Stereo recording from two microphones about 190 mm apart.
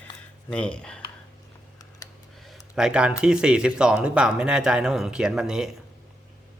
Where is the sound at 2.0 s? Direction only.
20° left (ahead or behind).